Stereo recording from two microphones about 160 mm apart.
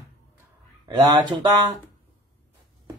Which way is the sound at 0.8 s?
25° right (ahead or behind).